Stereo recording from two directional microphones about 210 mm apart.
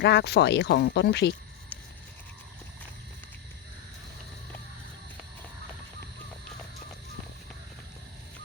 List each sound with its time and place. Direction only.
0.0 s speech: 55° left (ahead or behind)